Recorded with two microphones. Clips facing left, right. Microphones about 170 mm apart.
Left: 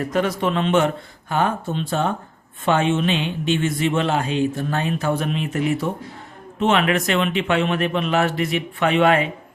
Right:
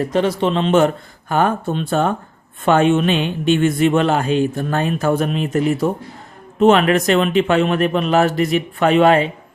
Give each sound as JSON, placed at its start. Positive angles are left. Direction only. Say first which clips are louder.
{"t": 0.0, "sound": "speech", "louder": "right 4 dB", "side_deg": -30}
{"t": 1.3, "sound": "speech", "louder": "right 4 dB", "side_deg": -50}